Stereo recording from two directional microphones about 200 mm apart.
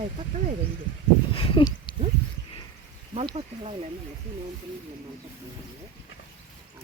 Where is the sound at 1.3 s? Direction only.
25° left (ahead or behind).